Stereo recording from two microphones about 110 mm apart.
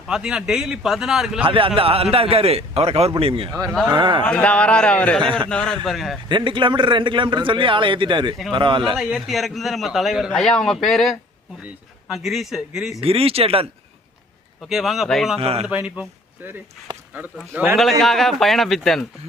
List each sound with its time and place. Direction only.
0.1 s a man's voice: 5° right (ahead or behind)
1.5 s a man's voice: 50° right (ahead or behind)
3.8 s a man's voice: 45° right (ahead or behind)
4.2 s a man's voice: 10° left (ahead or behind)
6.2 s a man's voice: 45° right (ahead or behind)
9.0 s a man's voice: 5° right (ahead or behind)
13.0 s a man's voice: 60° right (ahead or behind)
14.7 s a man's voice: 5° right (ahead or behind)
15.4 s a man's voice: 65° right (ahead or behind)
15.6 s speech: 10° right (ahead or behind)
18.0 s a man's voice: centre (ahead or behind)